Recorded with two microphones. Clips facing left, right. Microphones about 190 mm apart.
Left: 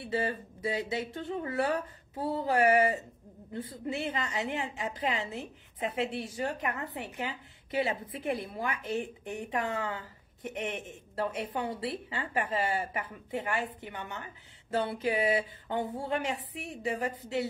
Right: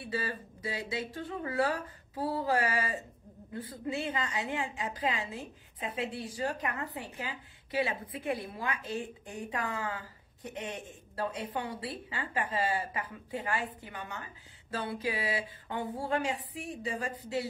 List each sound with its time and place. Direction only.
0.1 s a woman's voice: 25° left (ahead or behind)